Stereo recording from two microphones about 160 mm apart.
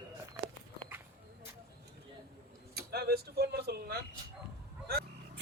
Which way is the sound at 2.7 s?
80° right.